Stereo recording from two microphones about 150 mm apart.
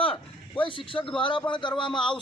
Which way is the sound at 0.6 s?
35° left (ahead or behind).